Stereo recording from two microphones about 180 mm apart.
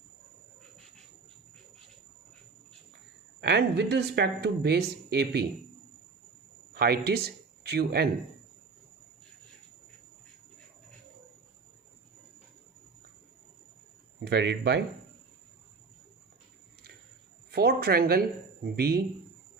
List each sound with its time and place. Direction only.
3.4 s speech: 70° right (ahead or behind)
6.7 s speech: 60° right (ahead or behind)
14.2 s speech: 70° right (ahead or behind)
17.5 s speech: 60° right (ahead or behind)